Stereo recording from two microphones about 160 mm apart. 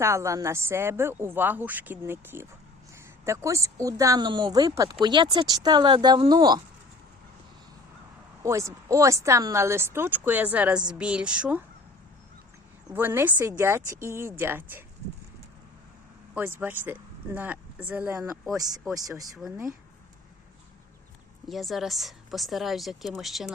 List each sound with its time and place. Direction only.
0.0 s speech: 20° right (ahead or behind)
8.4 s speech: 20° right (ahead or behind)
12.9 s speech: 15° right (ahead or behind)
16.3 s speech: 10° right (ahead or behind)
18.9 s speech: 20° right (ahead or behind)
21.4 s a woman's voice: centre (ahead or behind)